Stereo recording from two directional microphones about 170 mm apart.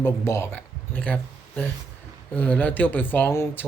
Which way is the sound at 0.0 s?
15° left (ahead or behind).